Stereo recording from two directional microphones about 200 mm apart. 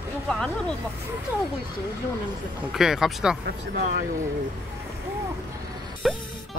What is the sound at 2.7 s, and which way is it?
Speech, centre (ahead or behind).